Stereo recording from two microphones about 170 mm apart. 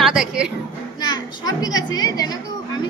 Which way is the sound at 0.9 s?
25° left (ahead or behind).